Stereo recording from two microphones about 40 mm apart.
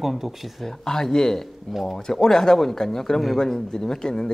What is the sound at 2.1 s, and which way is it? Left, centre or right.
Speech, centre.